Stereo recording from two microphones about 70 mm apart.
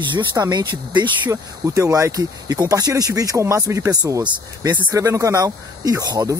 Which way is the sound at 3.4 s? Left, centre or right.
Right.